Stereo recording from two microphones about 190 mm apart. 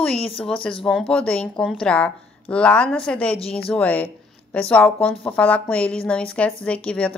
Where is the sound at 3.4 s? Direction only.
30° left (ahead or behind).